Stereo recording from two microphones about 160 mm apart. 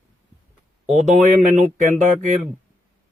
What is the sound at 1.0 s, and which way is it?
Speech, 50° right (ahead or behind).